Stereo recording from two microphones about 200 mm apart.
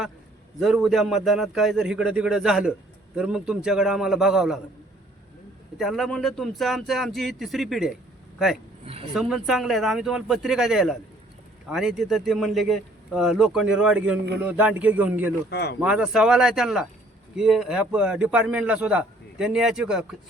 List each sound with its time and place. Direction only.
0.6 s a man's voice: centre (ahead or behind)
5.7 s a man's voice: centre (ahead or behind)
9.1 s a man's voice: centre (ahead or behind)
15.4 s speech: 55° left (ahead or behind)
15.8 s a man's voice: 5° right (ahead or behind)